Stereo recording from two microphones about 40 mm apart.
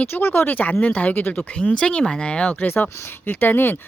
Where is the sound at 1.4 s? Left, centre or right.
Left.